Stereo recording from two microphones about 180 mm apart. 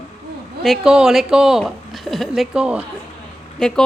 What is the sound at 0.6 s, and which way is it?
A woman's voice, centre (ahead or behind).